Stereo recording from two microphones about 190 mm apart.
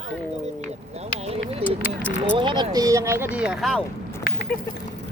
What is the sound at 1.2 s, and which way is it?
Speech, 30° right (ahead or behind).